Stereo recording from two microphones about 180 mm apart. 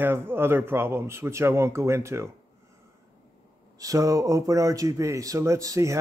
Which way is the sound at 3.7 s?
20° right (ahead or behind).